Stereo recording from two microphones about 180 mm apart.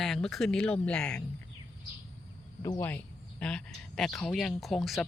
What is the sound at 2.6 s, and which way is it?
Speech, 15° left (ahead or behind).